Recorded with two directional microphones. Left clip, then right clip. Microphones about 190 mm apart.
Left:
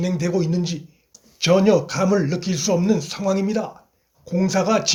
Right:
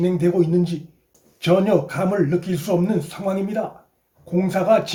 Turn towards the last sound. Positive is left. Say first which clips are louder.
# right 2 dB
turn(degrees=35)  # may be behind; listen again after turning